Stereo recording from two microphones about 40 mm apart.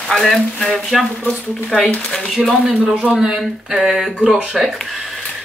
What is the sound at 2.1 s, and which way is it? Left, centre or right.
Speech, centre.